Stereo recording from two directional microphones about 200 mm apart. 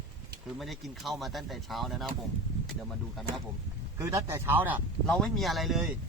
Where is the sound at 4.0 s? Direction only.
15° right (ahead or behind).